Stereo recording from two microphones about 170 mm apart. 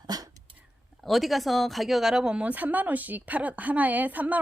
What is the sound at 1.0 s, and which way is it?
Speech, centre (ahead or behind).